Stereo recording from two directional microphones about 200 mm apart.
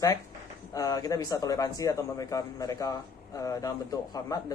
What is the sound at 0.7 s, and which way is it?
Speech, 15° left (ahead or behind).